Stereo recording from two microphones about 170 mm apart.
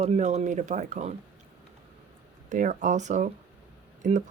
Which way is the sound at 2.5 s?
45° right (ahead or behind).